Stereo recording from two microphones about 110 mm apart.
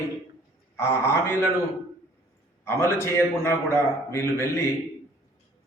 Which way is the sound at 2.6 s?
25° left (ahead or behind).